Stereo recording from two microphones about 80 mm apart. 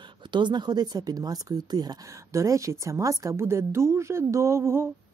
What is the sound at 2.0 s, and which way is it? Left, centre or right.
A woman's voice, right.